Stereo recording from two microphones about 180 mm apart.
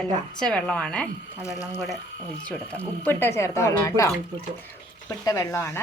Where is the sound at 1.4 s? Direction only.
20° left (ahead or behind).